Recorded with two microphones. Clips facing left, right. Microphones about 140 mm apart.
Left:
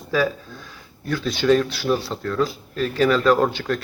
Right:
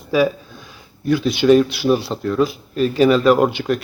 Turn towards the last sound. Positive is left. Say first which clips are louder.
# right 4 dB
turn(degrees=-15)  # may be behind; listen again after turning